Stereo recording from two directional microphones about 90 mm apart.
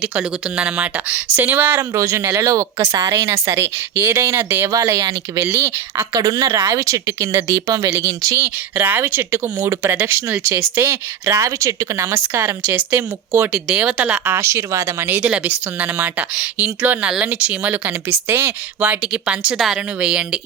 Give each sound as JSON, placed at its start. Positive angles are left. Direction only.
{"t": 0.0, "sound": "speech", "side_deg": -10}
{"t": 1.9, "sound": "speech", "side_deg": -30}
{"t": 4.7, "sound": "speech", "side_deg": -35}
{"t": 5.5, "sound": "speech", "side_deg": -25}
{"t": 6.0, "sound": "a woman's voice", "side_deg": -45}
{"t": 6.5, "sound": "speech", "side_deg": -30}
{"t": 8.4, "sound": "speech", "side_deg": -20}
{"t": 13.5, "sound": "speech", "side_deg": -10}
{"t": 14.3, "sound": "speech", "side_deg": -30}